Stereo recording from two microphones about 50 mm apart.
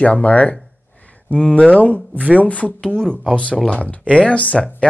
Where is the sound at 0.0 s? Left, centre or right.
Left.